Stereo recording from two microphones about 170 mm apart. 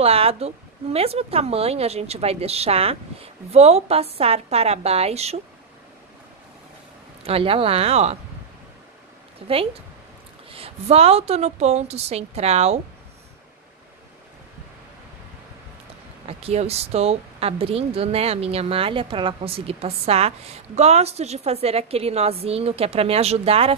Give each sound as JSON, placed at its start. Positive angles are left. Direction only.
{"t": 0.0, "sound": "speech", "side_deg": -35}
{"t": 7.2, "sound": "speech", "side_deg": -35}
{"t": 9.5, "sound": "speech", "side_deg": -35}
{"t": 16.3, "sound": "speech", "side_deg": -35}